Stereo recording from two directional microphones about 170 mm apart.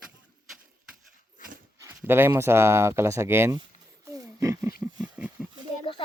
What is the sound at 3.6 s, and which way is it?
Wild animals, 20° right (ahead or behind).